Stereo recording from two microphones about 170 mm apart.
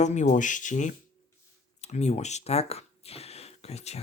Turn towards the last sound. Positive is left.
turn(degrees=40)  # may be behind; listen again after turning